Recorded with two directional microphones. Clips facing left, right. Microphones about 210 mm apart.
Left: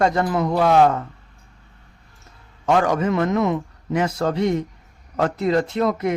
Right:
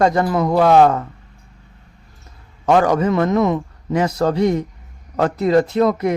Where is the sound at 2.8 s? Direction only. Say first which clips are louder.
Right 3 dB; 35° right (ahead or behind).